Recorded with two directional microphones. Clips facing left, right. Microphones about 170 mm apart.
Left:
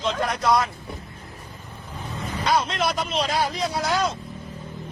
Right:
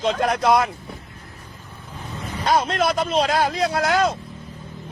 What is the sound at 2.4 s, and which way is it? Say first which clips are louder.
A man's voice: right 3 dB; 45° right (ahead or behind).